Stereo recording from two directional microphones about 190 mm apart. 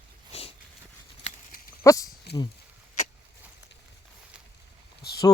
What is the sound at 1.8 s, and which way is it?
Speech, 15° left (ahead or behind).